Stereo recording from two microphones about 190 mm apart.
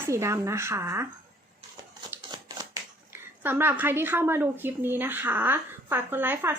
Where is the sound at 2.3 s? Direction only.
20° right (ahead or behind).